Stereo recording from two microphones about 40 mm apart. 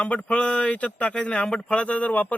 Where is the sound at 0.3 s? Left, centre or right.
Left.